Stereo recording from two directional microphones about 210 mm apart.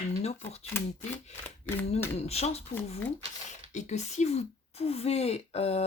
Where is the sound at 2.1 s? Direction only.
30° left (ahead or behind).